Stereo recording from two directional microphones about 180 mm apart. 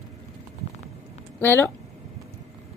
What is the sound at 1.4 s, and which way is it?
Speech, 10° left (ahead or behind).